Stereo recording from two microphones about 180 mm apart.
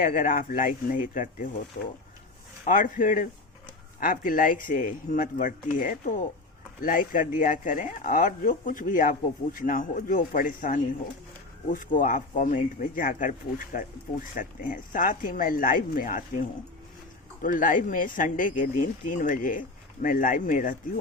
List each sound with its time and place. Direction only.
0.0 s speech: 50° left (ahead or behind)
2.6 s speech: 45° left (ahead or behind)
14.3 s speech: 45° left (ahead or behind)